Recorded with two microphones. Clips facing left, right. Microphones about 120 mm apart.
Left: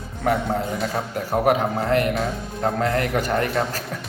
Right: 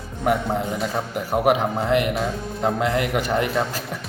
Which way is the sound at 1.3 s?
15° right (ahead or behind).